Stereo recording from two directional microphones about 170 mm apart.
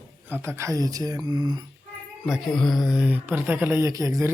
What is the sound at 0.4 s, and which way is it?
Speech, 15° right (ahead or behind).